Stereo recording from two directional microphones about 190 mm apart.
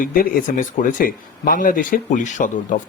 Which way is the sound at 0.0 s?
50° left (ahead or behind).